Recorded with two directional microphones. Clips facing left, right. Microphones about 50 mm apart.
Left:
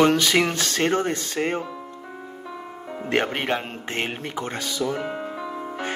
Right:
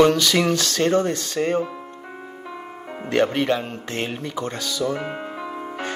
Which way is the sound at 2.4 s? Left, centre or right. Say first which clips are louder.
Right 1 dB; right.